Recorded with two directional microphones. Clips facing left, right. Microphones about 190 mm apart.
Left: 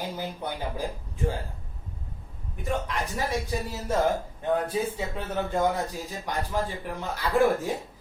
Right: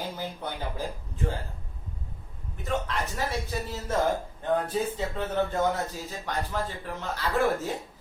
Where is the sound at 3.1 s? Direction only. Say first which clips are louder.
Left 5 dB; 15° left (ahead or behind).